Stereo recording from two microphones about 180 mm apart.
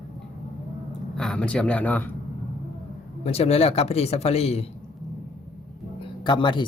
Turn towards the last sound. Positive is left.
turn(degrees=25)  # may be behind; listen again after turning